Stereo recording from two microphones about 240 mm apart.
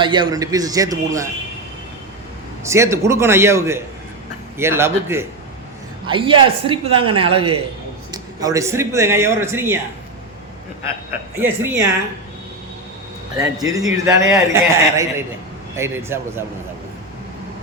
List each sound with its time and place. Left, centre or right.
0.0 s speech: centre
2.6 s speech: centre
6.1 s a woman's voice: right
11.3 s speech: centre
13.3 s speech: centre